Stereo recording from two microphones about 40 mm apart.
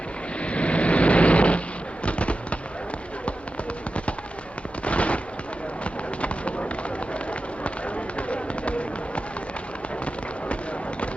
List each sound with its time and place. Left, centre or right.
0.3 s vehicle: left
2.0 s fireworks: left
4.9 s fireworks: left
7.1 s run: left